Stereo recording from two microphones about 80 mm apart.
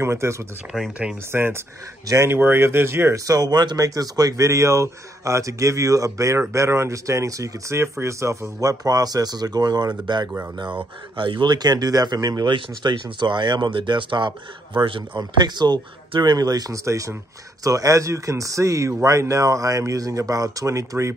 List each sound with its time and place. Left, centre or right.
0.0 s speech: right
2.3 s speech: right
3.3 s speech: right
11.1 s speech: right
12.4 s speech: right